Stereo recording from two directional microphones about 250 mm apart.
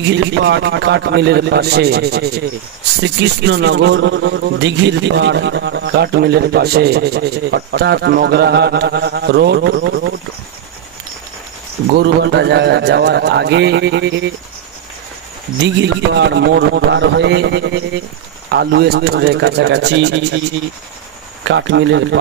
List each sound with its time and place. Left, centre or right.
0.1 s a man's voice: right
11.9 s a man's voice: right
15.6 s a man's voice: right
21.5 s a man's voice: right